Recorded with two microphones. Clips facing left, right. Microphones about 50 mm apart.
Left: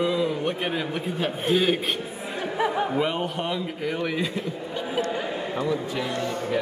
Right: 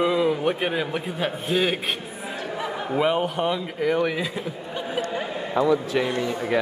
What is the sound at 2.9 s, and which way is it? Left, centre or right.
A man's voice, centre.